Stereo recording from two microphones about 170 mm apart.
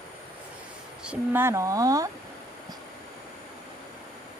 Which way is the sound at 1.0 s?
10° right (ahead or behind).